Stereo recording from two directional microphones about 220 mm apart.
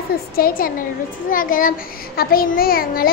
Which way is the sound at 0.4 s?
40° left (ahead or behind).